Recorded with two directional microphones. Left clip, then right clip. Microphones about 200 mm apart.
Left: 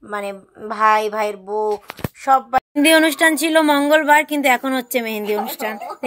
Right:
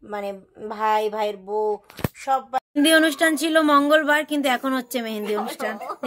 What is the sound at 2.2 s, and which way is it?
Speech, 20° left (ahead or behind).